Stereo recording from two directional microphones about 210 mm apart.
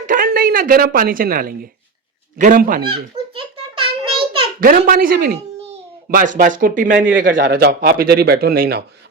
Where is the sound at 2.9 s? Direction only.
25° right (ahead or behind).